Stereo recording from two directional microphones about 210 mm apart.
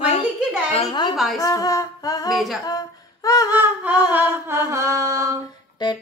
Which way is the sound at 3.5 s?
10° right (ahead or behind).